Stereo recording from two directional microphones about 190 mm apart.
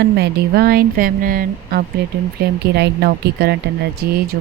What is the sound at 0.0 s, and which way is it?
Speech, 60° right (ahead or behind).